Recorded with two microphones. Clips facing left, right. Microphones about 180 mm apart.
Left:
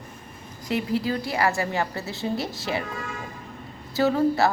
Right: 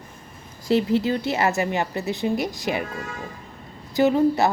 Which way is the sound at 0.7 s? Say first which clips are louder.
Right 5 dB; 25° right (ahead or behind).